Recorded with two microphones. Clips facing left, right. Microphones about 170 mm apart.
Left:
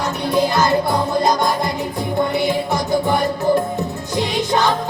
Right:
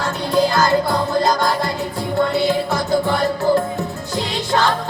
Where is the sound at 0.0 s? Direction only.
20° left (ahead or behind).